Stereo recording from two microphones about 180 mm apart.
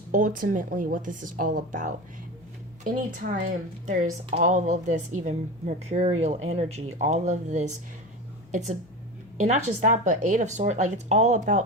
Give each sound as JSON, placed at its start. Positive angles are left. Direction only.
{"t": 0.1, "sound": "speech", "side_deg": -50}
{"t": 9.4, "sound": "speech", "side_deg": -40}